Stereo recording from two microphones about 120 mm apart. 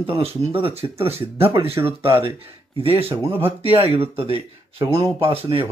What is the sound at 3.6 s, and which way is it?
Speech, 50° right (ahead or behind).